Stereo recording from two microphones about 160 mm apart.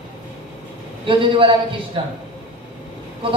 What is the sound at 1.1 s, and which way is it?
Speech, 35° right (ahead or behind).